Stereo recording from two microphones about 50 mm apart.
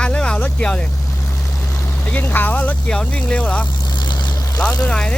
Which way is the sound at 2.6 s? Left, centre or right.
Left.